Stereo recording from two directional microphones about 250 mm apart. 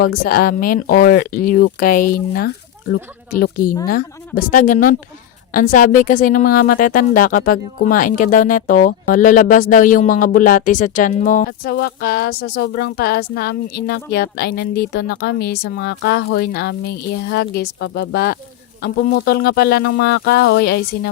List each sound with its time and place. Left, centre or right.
0.0 s speech: left